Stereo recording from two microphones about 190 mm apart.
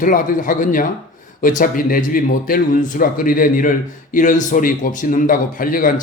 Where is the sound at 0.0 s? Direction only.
45° left (ahead or behind).